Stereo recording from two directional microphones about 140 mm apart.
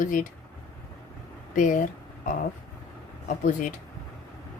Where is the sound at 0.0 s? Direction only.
70° left (ahead or behind).